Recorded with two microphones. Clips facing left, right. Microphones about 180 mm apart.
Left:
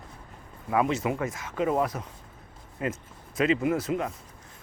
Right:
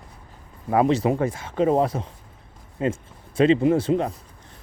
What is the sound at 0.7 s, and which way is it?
Speech, 35° right (ahead or behind).